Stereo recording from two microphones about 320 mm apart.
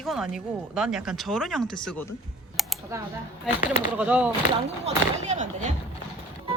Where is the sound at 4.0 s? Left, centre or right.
Centre.